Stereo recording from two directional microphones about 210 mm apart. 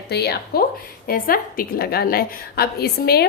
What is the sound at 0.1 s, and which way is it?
A woman's voice, 50° left (ahead or behind).